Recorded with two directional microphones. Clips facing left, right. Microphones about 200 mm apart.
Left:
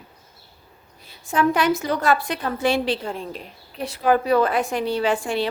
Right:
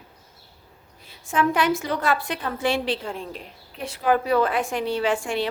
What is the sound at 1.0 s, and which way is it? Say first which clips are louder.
A woman's voice: left 2 dB; 40° left (ahead or behind).